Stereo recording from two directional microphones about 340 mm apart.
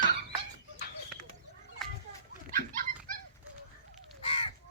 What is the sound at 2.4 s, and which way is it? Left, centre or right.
Dog, right.